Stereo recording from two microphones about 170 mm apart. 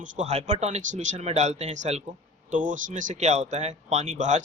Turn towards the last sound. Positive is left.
turn(degrees=-45)  # may be behind; listen again after turning